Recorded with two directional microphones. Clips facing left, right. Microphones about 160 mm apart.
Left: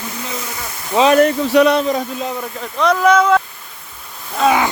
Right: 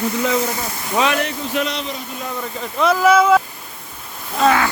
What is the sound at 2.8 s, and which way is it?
Speech, 5° right (ahead or behind).